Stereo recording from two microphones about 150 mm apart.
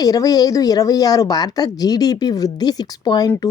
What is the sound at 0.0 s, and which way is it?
A woman's voice, 25° left (ahead or behind).